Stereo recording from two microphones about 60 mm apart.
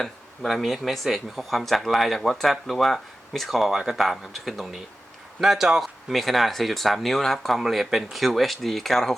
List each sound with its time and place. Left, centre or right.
0.0 s speech: centre